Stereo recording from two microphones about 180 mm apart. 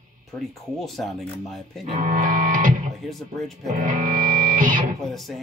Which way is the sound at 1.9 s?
45° right (ahead or behind).